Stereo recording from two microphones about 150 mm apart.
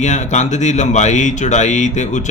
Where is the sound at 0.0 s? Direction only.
50° left (ahead or behind).